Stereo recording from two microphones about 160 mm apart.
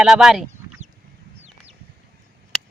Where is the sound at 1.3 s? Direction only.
40° right (ahead or behind).